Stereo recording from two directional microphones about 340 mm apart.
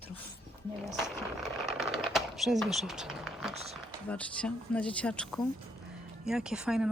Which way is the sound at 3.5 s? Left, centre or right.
Centre.